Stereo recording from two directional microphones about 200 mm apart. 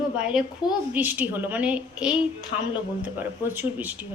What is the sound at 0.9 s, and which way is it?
Speech, 10° right (ahead or behind).